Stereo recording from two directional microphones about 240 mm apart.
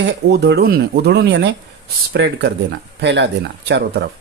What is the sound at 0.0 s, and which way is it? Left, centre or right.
Speech, right.